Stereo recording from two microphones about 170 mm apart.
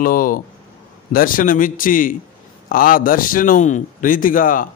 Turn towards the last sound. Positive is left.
turn(degrees=55)  # may be behind; listen again after turning